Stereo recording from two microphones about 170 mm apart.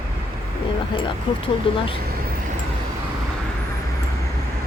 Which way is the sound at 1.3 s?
30° left (ahead or behind).